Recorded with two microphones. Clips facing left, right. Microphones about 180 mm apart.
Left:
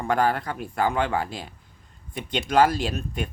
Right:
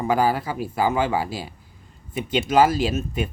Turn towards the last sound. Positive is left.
turn(degrees=-5)  # may be behind; listen again after turning